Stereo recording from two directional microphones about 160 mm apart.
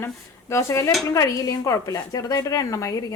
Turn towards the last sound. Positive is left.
turn(degrees=20)  # may be behind; listen again after turning